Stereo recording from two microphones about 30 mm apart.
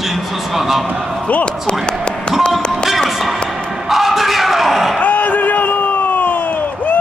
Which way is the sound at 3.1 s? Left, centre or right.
Centre.